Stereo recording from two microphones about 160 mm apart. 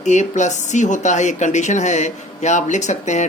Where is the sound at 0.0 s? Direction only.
45° left (ahead or behind).